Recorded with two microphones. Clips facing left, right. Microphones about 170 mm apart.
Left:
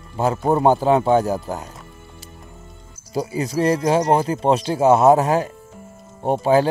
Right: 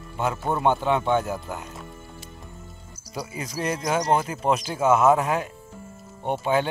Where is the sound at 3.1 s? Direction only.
35° left (ahead or behind).